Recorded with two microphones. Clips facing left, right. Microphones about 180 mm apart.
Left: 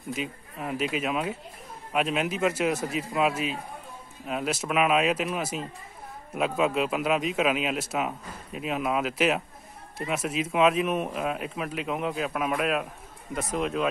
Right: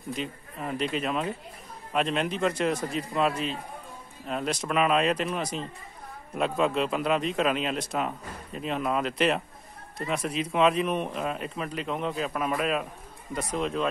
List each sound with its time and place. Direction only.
0.1 s a man's voice: 5° left (ahead or behind)